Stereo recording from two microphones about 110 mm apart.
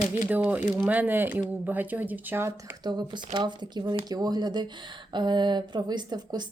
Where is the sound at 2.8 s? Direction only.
40° right (ahead or behind).